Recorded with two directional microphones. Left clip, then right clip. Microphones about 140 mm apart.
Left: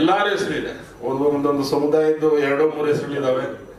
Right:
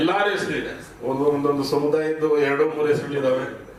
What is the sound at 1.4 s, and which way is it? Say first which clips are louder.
A man's voice: left 2 dB; 25° left (ahead or behind).